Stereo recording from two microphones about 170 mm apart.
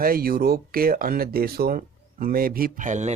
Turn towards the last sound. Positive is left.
turn(degrees=-45)  # may be behind; listen again after turning